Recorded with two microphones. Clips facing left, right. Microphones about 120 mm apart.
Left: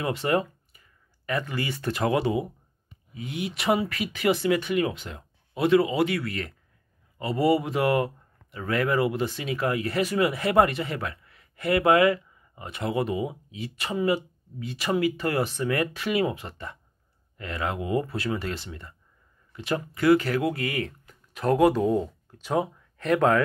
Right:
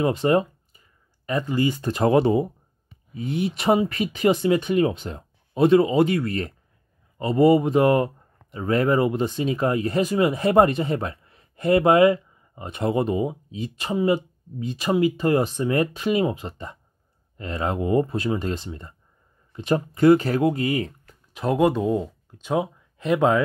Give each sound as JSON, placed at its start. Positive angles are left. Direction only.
{"t": 0.0, "sound": "a man's voice", "side_deg": -20}
{"t": 21.6, "sound": "speech", "side_deg": 0}
{"t": 22.9, "sound": "speech", "side_deg": -20}